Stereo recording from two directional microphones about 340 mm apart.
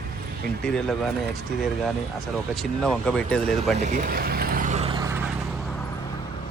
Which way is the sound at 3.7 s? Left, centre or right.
Right.